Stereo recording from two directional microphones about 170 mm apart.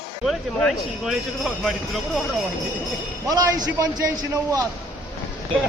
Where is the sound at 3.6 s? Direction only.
20° right (ahead or behind).